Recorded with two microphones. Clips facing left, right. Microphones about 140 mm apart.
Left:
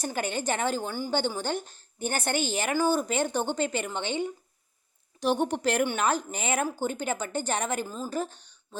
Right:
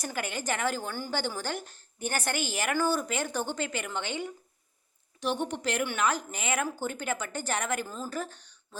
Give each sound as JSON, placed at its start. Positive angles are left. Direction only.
{"t": 0.0, "sound": "a woman's voice", "side_deg": 30}
{"t": 5.2, "sound": "a woman's voice", "side_deg": 40}
{"t": 5.9, "sound": "a woman's voice", "side_deg": 30}
{"t": 7.9, "sound": "speech", "side_deg": 10}
{"t": 8.1, "sound": "speech", "side_deg": 25}